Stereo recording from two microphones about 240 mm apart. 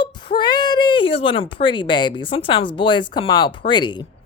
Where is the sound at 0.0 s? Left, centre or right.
Centre.